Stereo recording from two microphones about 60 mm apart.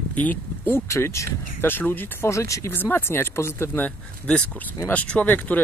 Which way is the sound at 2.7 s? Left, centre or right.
Left.